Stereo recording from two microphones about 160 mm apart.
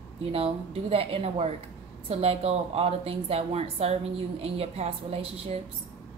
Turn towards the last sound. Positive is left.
turn(degrees=-40)  # may be behind; listen again after turning